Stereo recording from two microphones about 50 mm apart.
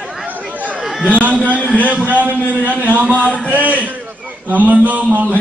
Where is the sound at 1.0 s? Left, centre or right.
Right.